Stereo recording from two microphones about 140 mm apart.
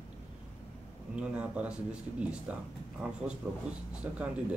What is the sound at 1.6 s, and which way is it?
Speech, 5° right (ahead or behind).